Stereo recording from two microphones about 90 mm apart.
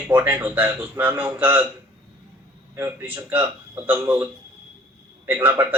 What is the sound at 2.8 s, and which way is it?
A man's voice, 20° right (ahead or behind).